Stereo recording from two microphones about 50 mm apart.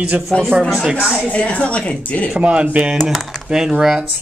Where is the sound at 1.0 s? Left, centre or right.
Centre.